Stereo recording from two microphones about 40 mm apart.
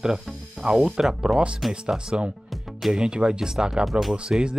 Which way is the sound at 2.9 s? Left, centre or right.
Right.